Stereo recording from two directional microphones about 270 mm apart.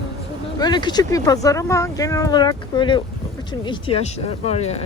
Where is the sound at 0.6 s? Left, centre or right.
Centre.